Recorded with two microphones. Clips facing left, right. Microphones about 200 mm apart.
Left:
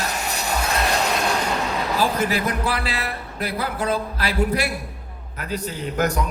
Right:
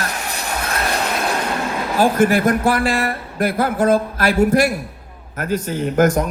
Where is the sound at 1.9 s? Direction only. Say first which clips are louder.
Right 8 dB; 50° right (ahead or behind).